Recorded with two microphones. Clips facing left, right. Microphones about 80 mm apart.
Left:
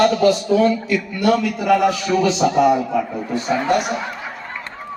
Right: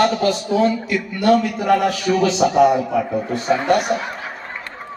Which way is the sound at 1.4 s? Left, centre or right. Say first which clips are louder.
Left 1 dB; right.